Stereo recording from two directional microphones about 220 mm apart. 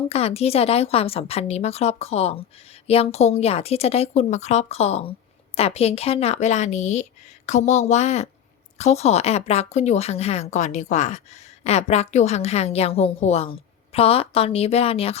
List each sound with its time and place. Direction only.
0.1 s a woman's voice: 30° left (ahead or behind)